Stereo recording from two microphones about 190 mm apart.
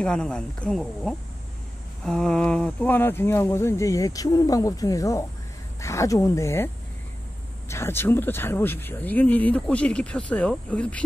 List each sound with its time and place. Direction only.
0.0 s speech: 5° left (ahead or behind)